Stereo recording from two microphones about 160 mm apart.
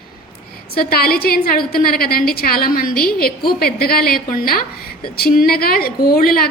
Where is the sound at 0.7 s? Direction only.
70° left (ahead or behind).